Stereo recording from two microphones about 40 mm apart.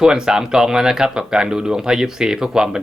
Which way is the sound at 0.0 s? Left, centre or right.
Centre.